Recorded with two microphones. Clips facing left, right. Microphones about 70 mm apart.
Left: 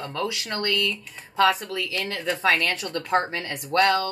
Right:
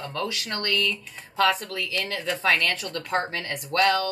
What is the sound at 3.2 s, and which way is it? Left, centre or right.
Speech, centre.